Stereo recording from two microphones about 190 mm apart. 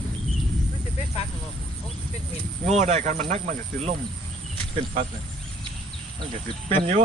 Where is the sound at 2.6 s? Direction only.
35° right (ahead or behind).